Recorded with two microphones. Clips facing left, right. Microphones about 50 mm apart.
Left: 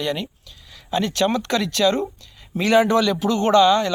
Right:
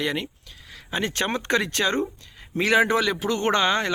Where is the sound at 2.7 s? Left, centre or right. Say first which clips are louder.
Left 4 dB; centre.